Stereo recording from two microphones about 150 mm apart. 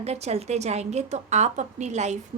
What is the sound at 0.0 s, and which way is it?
A woman's voice, 45° right (ahead or behind).